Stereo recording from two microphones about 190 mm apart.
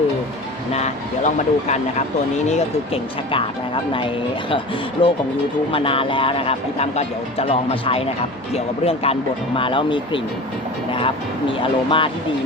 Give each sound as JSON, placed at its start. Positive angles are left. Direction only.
{"t": 0.7, "sound": "speech", "side_deg": 35}